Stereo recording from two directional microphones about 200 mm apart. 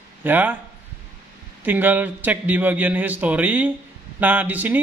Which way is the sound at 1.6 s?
10° right (ahead or behind).